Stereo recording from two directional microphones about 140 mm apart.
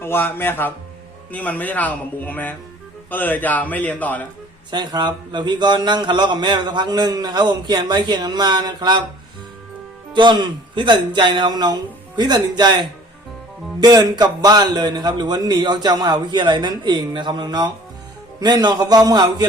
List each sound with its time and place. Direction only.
0.0 s speech: 15° left (ahead or behind)
4.7 s a man's voice: 30° right (ahead or behind)
10.1 s a man's voice: 35° right (ahead or behind)